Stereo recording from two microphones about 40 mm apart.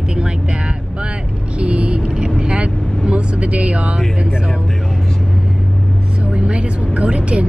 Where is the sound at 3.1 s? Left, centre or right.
Right.